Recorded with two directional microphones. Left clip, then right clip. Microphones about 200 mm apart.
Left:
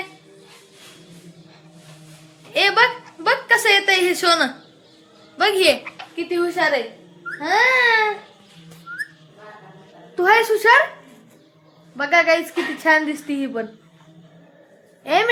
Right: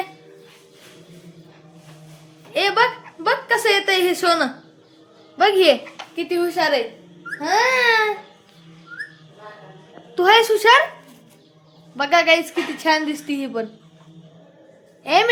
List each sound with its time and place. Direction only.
2.5 s a sound: 5° right (ahead or behind)
5.4 s a child's voice: 25° right (ahead or behind)
6.1 s a woman's voice: 10° right (ahead or behind)
10.2 s a woman's voice: 10° right (ahead or behind)
11.9 s a woman's voice: 10° right (ahead or behind)
15.0 s a woman's voice: centre (ahead or behind)